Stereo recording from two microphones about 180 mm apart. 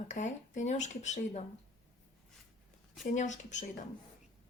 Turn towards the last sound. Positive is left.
turn(degrees=40)  # may be behind; listen again after turning